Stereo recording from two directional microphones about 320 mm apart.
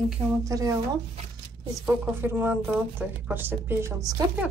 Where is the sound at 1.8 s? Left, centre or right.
Centre.